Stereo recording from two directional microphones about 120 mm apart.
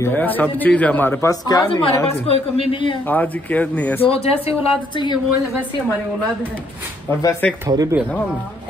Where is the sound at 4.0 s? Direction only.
55° left (ahead or behind).